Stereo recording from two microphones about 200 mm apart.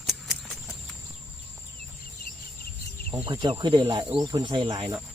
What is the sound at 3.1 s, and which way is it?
Speech, 25° right (ahead or behind).